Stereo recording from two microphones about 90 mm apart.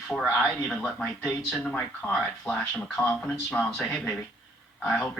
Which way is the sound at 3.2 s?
10° left (ahead or behind).